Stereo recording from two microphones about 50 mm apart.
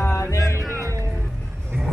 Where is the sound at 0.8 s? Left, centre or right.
Right.